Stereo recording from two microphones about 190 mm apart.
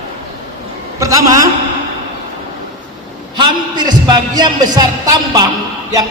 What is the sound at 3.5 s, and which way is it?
A man's voice, 20° right (ahead or behind).